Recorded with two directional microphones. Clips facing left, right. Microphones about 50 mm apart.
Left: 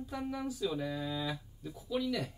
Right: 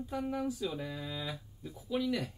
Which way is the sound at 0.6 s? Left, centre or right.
Centre.